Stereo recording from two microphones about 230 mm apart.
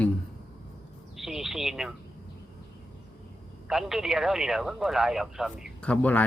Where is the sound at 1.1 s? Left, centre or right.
Centre.